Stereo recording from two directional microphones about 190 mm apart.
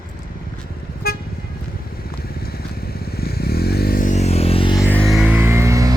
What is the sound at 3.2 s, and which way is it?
Music, 55° left (ahead or behind).